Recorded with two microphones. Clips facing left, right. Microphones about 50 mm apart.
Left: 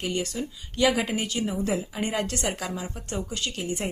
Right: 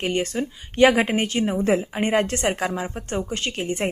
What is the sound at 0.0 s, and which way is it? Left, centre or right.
A woman's voice, right.